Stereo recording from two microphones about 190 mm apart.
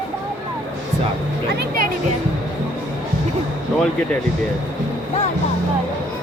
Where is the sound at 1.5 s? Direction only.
50° right (ahead or behind).